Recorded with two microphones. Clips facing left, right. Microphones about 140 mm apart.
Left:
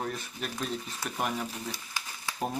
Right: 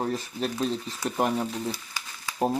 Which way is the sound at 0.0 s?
30° right (ahead or behind).